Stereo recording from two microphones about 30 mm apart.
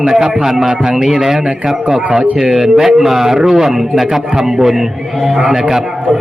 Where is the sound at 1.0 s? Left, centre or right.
Centre.